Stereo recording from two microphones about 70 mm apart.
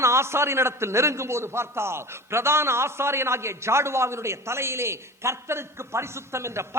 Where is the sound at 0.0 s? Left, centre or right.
Right.